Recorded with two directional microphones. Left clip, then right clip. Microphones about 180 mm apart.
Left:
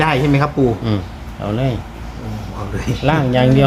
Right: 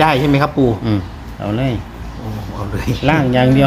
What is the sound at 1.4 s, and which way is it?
Speech, centre (ahead or behind).